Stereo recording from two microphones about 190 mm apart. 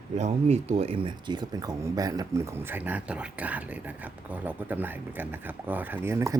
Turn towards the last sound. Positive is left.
turn(degrees=-15)  # may be behind; listen again after turning